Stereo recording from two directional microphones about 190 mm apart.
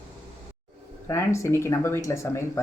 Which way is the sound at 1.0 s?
15° left (ahead or behind).